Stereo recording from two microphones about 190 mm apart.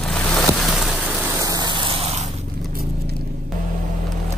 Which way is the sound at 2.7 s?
50° right (ahead or behind).